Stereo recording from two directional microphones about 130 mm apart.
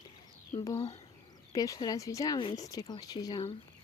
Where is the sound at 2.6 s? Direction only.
30° left (ahead or behind).